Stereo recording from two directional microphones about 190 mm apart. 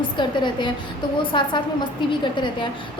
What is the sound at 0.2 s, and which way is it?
A woman's voice, 25° left (ahead or behind).